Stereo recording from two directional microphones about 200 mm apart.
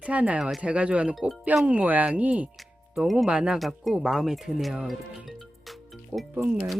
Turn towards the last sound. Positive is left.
turn(degrees=-5)  # may be behind; listen again after turning